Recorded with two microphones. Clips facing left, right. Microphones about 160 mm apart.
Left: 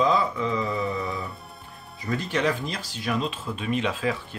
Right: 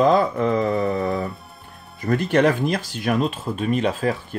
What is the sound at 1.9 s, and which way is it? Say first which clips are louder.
Speech: right 8 dB; 55° right (ahead or behind).